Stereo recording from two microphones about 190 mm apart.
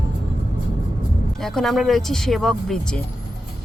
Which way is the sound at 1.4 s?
Centre (ahead or behind).